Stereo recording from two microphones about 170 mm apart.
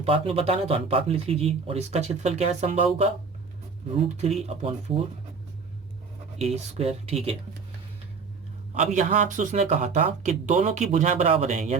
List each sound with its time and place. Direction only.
0.0 s speech: 35° right (ahead or behind)
6.4 s speech: 40° right (ahead or behind)
8.7 s speech: 45° right (ahead or behind)